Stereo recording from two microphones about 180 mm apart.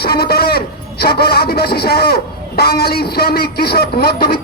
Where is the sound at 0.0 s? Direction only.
60° left (ahead or behind).